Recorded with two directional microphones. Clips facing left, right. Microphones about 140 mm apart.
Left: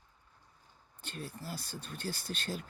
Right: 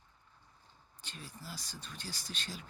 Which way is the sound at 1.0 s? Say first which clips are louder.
Left 7 dB; 55° left (ahead or behind).